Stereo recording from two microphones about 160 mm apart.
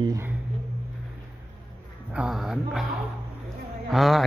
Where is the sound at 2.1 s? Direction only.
5° right (ahead or behind).